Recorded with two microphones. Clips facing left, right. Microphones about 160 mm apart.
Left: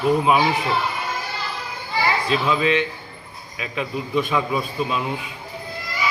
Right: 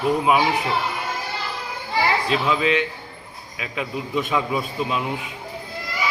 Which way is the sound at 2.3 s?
15° right (ahead or behind).